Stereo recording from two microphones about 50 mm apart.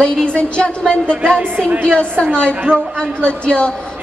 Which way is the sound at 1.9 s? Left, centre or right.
Centre.